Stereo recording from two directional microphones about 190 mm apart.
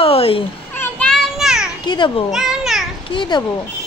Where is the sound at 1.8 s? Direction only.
25° left (ahead or behind).